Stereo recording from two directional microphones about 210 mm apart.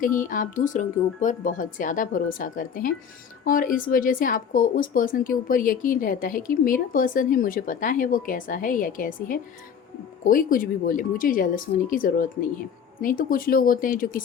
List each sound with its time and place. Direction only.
0.2 s speech: 40° left (ahead or behind)